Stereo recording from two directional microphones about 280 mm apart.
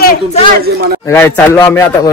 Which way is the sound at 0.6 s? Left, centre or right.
Right.